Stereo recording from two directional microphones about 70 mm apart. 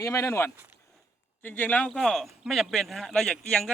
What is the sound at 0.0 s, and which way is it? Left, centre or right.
Speech, left.